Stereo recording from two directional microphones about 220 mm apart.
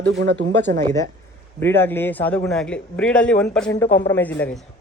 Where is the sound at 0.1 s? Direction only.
55° right (ahead or behind).